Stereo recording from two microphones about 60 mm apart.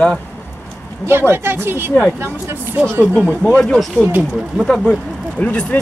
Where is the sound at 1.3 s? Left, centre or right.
Right.